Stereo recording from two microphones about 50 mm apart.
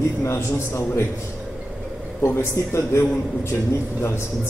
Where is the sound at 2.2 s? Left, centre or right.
Left.